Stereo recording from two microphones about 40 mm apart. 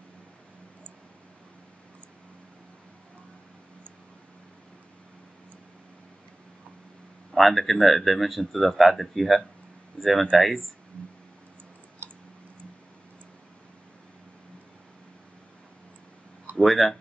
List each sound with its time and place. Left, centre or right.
7.3 s speech: centre
12.0 s clicking: right
16.5 s speech: centre